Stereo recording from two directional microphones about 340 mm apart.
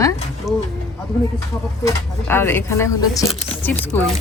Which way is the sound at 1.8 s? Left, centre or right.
Centre.